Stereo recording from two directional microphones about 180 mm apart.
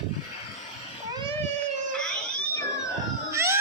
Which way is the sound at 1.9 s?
5° left (ahead or behind).